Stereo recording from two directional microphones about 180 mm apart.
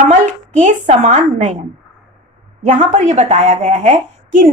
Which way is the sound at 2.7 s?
40° right (ahead or behind).